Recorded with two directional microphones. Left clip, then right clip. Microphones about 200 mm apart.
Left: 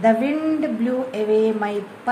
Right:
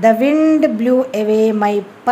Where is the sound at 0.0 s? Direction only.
50° right (ahead or behind).